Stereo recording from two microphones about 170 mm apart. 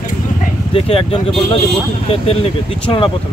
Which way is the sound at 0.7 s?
35° left (ahead or behind).